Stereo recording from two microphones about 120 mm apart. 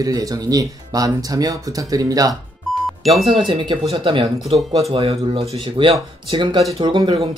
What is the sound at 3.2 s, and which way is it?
Speech, 45° right (ahead or behind).